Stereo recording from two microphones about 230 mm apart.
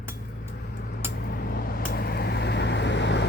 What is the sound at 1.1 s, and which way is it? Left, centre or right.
Vehicle, left.